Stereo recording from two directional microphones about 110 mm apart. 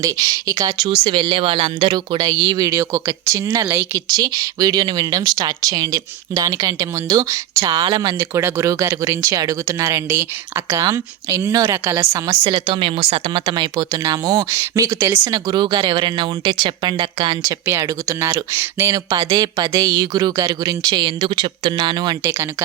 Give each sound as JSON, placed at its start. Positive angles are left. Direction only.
{"t": 0.0, "sound": "speech", "side_deg": -35}
{"t": 1.0, "sound": "speech", "side_deg": -55}
{"t": 1.9, "sound": "speech", "side_deg": -35}
{"t": 3.7, "sound": "speech", "side_deg": -20}
{"t": 4.1, "sound": "speech", "side_deg": -35}
{"t": 8.3, "sound": "speech", "side_deg": -25}
{"t": 12.5, "sound": "speech", "side_deg": -50}
{"t": 15.3, "sound": "speech", "side_deg": -40}
{"t": 17.7, "sound": "speech", "side_deg": -25}
{"t": 19.3, "sound": "speech", "side_deg": -40}
{"t": 22.2, "sound": "speech", "side_deg": -20}